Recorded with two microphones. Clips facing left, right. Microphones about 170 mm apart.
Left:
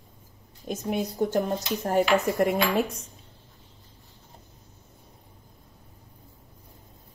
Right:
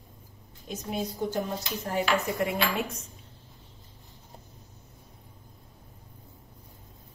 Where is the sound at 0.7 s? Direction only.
55° left (ahead or behind).